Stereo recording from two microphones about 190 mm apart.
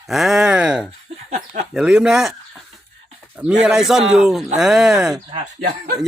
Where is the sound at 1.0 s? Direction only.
35° right (ahead or behind).